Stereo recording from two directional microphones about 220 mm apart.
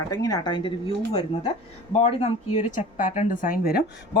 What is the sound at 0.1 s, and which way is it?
Speech, 15° left (ahead or behind).